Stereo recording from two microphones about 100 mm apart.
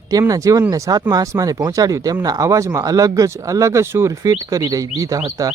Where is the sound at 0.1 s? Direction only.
35° right (ahead or behind).